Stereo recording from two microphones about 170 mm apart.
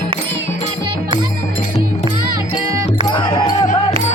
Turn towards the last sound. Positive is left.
turn(degrees=25)  # may be behind; listen again after turning